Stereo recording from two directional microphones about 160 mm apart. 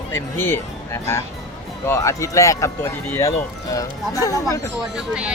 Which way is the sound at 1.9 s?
20° left (ahead or behind).